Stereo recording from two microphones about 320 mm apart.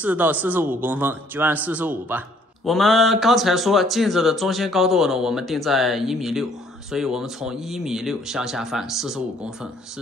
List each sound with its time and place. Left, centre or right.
0.0 s a man's voice: centre